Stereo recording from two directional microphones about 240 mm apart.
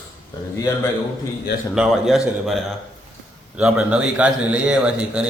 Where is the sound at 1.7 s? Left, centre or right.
Centre.